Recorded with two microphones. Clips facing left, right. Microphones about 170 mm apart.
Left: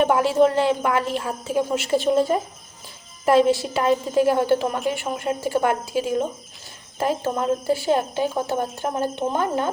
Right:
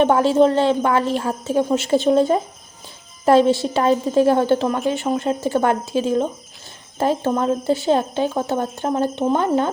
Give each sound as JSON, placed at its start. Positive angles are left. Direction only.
{"t": 0.0, "sound": "a woman's voice", "side_deg": -30}
{"t": 7.7, "sound": "a woman's voice", "side_deg": -25}